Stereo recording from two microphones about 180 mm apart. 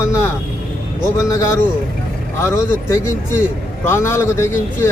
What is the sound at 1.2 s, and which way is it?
A man's voice, 15° left (ahead or behind).